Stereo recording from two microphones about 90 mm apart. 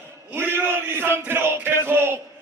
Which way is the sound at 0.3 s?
25° right (ahead or behind).